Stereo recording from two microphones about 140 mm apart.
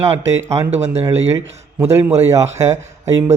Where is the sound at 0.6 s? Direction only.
50° right (ahead or behind).